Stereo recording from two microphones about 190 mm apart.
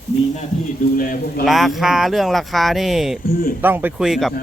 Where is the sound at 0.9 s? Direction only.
50° left (ahead or behind).